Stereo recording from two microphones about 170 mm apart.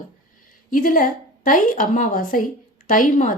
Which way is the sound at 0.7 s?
55° left (ahead or behind).